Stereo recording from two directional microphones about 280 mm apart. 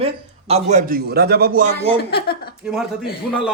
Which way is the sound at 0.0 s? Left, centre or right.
Right.